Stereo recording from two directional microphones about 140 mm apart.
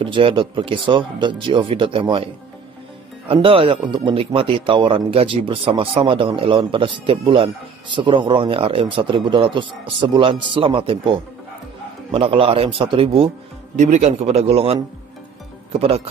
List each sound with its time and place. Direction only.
0.0 s a man's voice: 35° right (ahead or behind)
3.4 s a man's voice: 40° right (ahead or behind)
13.7 s a man's voice: 55° right (ahead or behind)